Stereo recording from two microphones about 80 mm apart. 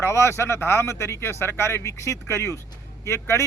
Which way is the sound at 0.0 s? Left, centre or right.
Left.